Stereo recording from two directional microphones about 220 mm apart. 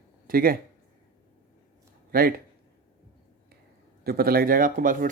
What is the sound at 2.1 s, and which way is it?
Speech, 40° right (ahead or behind).